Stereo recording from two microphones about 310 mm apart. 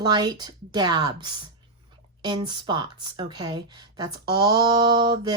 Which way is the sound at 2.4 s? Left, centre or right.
Centre.